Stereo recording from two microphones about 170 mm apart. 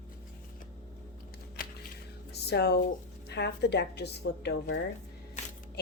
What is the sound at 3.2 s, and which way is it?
Speech, 80° left.